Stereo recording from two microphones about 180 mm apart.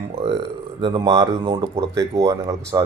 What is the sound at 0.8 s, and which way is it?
Speech, 20° right (ahead or behind).